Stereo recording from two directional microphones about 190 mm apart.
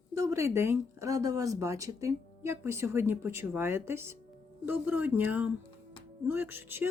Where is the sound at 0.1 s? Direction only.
15° right (ahead or behind).